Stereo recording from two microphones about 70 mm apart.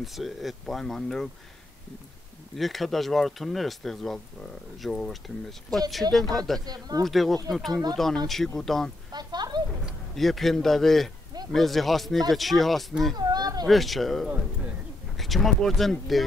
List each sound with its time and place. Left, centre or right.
0.0 s speech: centre
2.5 s speech: centre
6.6 s speech: right
7.1 s speech: centre
9.1 s a sound: right
10.1 s speech: centre
13.1 s a sound: right
13.7 s speech: centre